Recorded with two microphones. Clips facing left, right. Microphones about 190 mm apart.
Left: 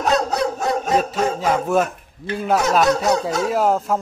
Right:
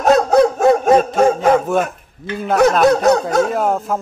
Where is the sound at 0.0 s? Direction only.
50° right (ahead or behind).